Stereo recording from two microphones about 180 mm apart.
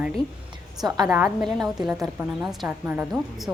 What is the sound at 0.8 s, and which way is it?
Speech, 20° right (ahead or behind).